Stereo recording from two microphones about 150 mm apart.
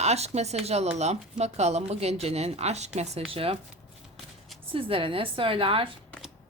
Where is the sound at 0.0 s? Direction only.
45° right (ahead or behind).